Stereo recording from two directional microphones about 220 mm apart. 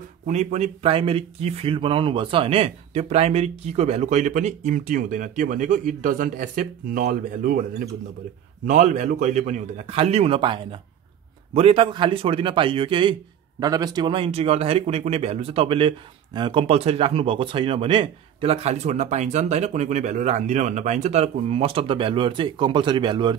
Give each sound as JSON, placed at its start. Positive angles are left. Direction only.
{"t": 0.3, "sound": "speech", "side_deg": -30}
{"t": 8.6, "sound": "speech", "side_deg": -35}